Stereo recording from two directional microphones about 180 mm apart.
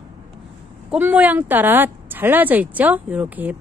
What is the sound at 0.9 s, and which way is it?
A woman's voice, 10° right (ahead or behind).